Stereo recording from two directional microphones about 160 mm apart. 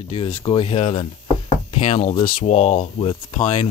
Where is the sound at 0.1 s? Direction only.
35° left (ahead or behind).